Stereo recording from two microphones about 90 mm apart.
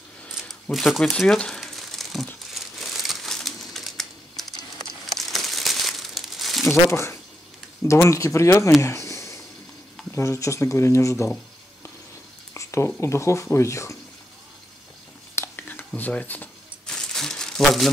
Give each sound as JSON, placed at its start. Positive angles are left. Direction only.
{"t": 0.3, "sound": "crumpling", "side_deg": 0}
{"t": 6.9, "sound": "speech", "side_deg": 30}
{"t": 8.8, "sound": "a sound", "side_deg": 35}
{"t": 10.1, "sound": "speech", "side_deg": 35}
{"t": 12.5, "sound": "a sound", "side_deg": 30}
{"t": 13.0, "sound": "speech", "side_deg": 30}
{"t": 15.4, "sound": "a sound", "side_deg": 20}
{"t": 15.9, "sound": "speech", "side_deg": 15}
{"t": 16.8, "sound": "crumpling", "side_deg": 5}